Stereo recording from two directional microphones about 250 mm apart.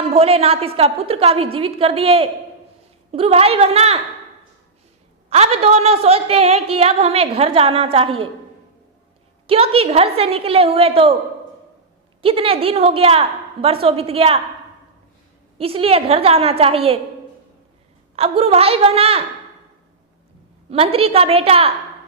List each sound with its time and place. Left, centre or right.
0.1 s a woman's voice: right
5.3 s a woman's voice: right
9.5 s a woman's voice: right
12.2 s a woman's voice: right
15.5 s a woman's voice: right
18.2 s a woman's voice: right
20.7 s a woman's voice: right